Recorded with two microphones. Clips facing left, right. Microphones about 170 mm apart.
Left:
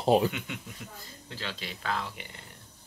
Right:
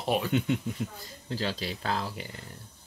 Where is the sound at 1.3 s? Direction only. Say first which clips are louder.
Right 7 dB; 40° right (ahead or behind).